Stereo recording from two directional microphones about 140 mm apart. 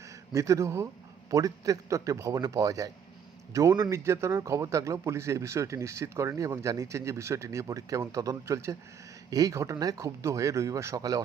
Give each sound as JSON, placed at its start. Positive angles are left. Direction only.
{"t": 0.3, "sound": "a man's voice", "side_deg": -20}